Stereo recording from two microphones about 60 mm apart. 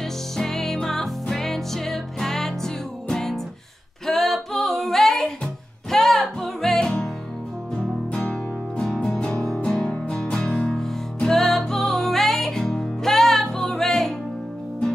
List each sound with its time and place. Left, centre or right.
0.0 s music: centre
4.0 s female singing: centre
5.4 s music: centre
8.1 s music: centre